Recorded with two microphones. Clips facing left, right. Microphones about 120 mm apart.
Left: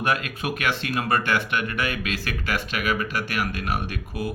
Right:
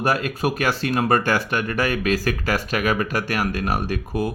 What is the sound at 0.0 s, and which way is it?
Speech, 35° right (ahead or behind).